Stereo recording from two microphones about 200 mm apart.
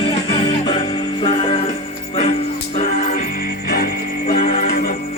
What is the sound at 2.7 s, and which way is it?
Music, 40° left (ahead or behind).